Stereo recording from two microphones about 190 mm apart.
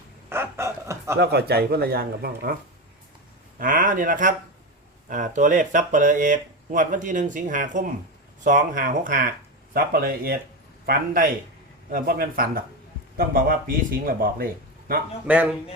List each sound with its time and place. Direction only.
0.3 s chicken: 15° right (ahead or behind)
1.2 s speech: 55° right (ahead or behind)
3.6 s speech: 45° right (ahead or behind)
15.3 s speech: 5° right (ahead or behind)